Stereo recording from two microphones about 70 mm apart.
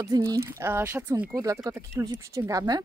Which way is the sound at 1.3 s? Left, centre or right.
Right.